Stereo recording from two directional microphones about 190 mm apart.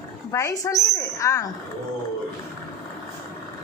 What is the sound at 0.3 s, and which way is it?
Speech, 20° left (ahead or behind).